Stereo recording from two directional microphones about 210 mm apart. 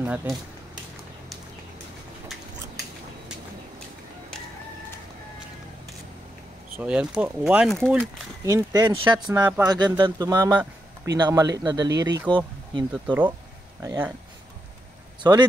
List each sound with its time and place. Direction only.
0.0 s speech: 5° right (ahead or behind)
6.8 s speech: 5° right (ahead or behind)
8.5 s speech: 15° right (ahead or behind)
9.3 s speech: 10° right (ahead or behind)
10.5 s a sound: 5° right (ahead or behind)
11.1 s speech: 20° right (ahead or behind)
12.9 s speech: 5° right (ahead or behind)
15.2 s speech: 15° right (ahead or behind)